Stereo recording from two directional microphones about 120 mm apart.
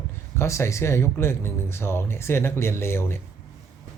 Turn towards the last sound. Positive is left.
turn(degrees=20)  # may be behind; listen again after turning